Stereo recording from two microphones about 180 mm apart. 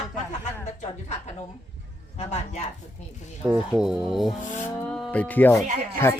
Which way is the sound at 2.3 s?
35° left (ahead or behind).